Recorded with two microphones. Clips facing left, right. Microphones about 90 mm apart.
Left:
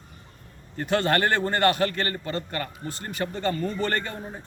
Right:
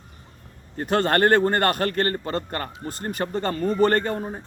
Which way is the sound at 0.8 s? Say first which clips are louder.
Right 3 dB; 40° right (ahead or behind).